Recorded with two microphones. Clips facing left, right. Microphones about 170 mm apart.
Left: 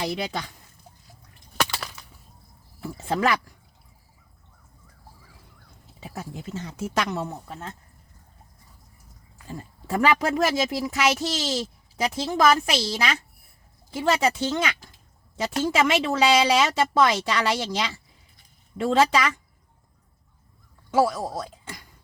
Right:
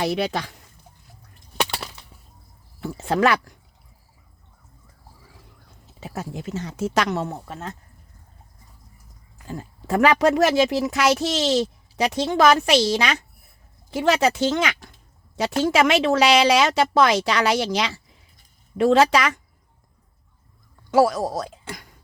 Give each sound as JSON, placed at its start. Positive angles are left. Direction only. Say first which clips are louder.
{"t": 0.0, "sound": "speech", "louder": "right 5 dB", "side_deg": -75}
{"t": 2.8, "sound": "speech", "louder": "right 4 dB", "side_deg": -80}
{"t": 6.0, "sound": "speech", "louder": "right 4 dB", "side_deg": -80}
{"t": 9.5, "sound": "speech", "louder": "right 4 dB", "side_deg": -80}
{"t": 20.9, "sound": "speech", "louder": "right 4 dB", "side_deg": -80}